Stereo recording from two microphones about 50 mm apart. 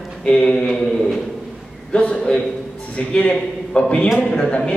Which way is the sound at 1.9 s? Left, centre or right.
Left.